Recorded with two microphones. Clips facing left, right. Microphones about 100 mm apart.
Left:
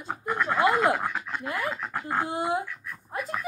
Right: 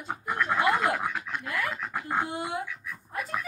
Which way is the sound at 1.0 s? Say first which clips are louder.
Left 1 dB; centre (ahead or behind).